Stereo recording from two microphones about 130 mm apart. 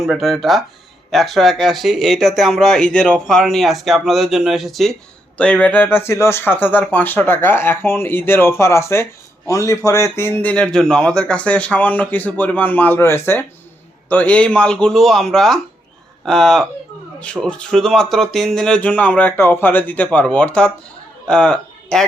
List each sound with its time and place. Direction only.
0.0 s speech: centre (ahead or behind)